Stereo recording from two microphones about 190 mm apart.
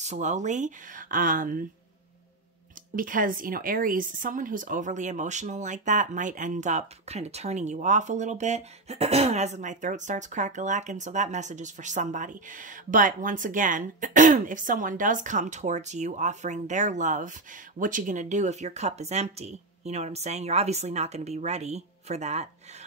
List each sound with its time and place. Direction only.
0.0 s speech: 40° right (ahead or behind)
3.0 s speech: 45° right (ahead or behind)